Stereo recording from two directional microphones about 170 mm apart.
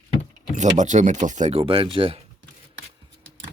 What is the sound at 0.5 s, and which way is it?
Speech, 45° right (ahead or behind).